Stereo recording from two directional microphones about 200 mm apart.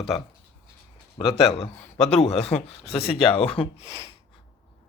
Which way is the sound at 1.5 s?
35° left (ahead or behind).